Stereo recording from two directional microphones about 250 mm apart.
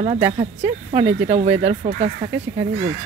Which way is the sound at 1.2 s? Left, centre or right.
Right.